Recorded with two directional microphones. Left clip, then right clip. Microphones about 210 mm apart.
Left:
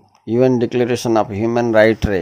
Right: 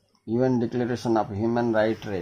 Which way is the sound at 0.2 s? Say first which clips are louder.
Left 9 dB; 35° left (ahead or behind).